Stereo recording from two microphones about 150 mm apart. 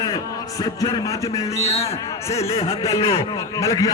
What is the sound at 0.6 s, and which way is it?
A man's voice, 25° left (ahead or behind).